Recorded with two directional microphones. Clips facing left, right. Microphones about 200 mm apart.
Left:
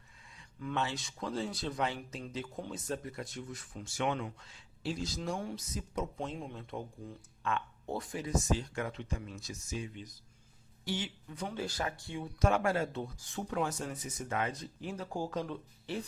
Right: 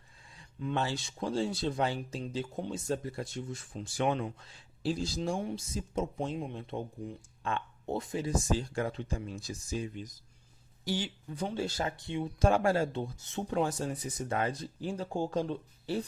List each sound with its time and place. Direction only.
0.6 s speech: 30° right (ahead or behind)